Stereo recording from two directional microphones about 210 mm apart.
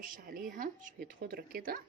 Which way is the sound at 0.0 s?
40° right (ahead or behind).